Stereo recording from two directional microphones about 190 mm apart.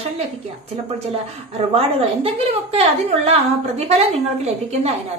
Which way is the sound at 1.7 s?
30° right (ahead or behind).